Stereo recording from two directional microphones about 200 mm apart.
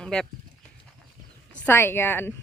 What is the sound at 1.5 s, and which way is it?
Speech, 10° left (ahead or behind).